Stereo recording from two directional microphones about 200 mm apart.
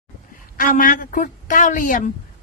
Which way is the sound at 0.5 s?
45° left (ahead or behind).